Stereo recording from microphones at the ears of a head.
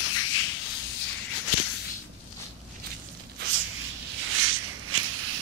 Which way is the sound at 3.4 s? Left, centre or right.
Right.